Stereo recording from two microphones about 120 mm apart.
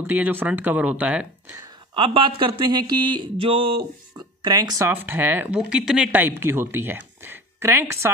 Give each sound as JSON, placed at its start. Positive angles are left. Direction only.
{"t": 0.0, "sound": "speech", "side_deg": -15}
{"t": 2.0, "sound": "speech", "side_deg": -45}
{"t": 4.4, "sound": "speech", "side_deg": -35}
{"t": 4.8, "sound": "speech", "side_deg": -20}